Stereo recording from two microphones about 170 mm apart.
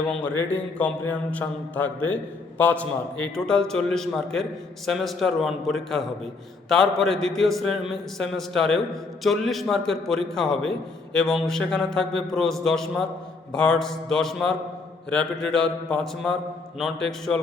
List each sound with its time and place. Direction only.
0.1 s a man's voice: 10° left (ahead or behind)